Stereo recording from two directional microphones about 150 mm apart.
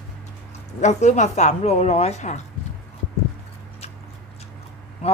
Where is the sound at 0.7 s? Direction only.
50° left (ahead or behind).